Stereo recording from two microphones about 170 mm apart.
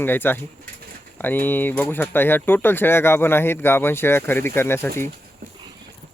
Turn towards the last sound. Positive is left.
turn(degrees=15)  # may be behind; listen again after turning